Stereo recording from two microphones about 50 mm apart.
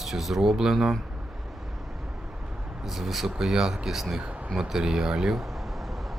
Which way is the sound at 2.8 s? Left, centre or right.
Centre.